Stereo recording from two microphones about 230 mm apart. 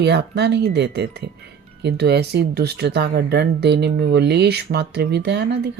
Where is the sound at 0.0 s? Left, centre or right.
Right.